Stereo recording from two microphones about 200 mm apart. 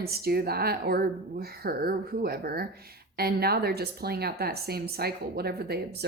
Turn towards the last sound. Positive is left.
turn(degrees=-50)  # may be behind; listen again after turning